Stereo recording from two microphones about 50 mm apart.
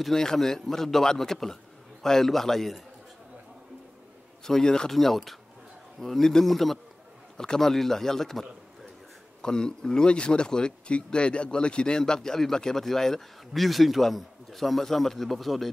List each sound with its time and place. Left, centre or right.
0.0 s a man's voice: centre
4.5 s a man's voice: centre